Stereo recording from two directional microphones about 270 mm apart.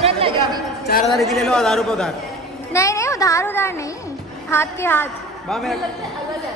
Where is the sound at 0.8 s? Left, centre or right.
Left.